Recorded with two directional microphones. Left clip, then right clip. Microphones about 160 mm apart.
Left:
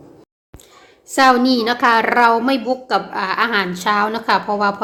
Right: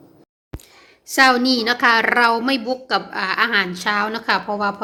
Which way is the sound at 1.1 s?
Centre (ahead or behind).